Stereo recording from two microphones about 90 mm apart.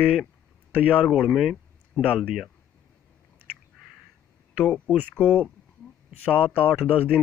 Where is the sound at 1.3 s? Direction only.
Centre (ahead or behind).